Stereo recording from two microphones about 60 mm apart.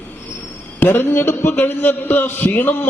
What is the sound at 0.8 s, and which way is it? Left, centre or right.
Speech, left.